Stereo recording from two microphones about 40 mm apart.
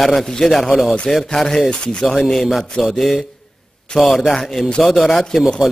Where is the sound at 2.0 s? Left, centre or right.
Centre.